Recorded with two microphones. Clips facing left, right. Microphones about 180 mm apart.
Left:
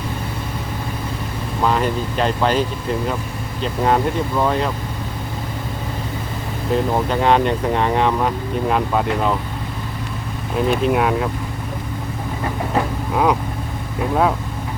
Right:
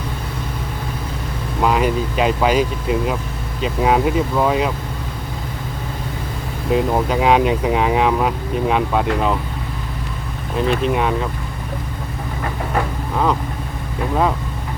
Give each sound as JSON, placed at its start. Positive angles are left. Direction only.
{"t": 1.6, "sound": "speech", "side_deg": -5}
{"t": 6.7, "sound": "speech", "side_deg": -5}
{"t": 10.5, "sound": "speech", "side_deg": 5}